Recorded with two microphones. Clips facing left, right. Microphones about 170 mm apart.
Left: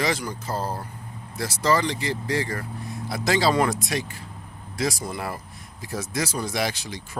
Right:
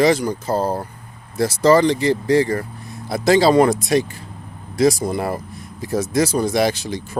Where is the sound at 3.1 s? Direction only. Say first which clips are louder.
Right 8 dB; 45° right (ahead or behind).